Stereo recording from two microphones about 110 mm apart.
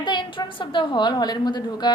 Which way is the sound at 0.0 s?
45° left (ahead or behind).